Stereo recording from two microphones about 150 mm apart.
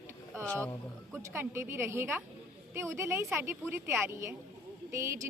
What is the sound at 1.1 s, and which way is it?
A woman's voice, 15° right (ahead or behind).